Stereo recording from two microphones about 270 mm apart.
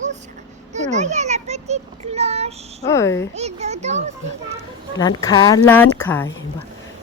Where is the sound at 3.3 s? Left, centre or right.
Right.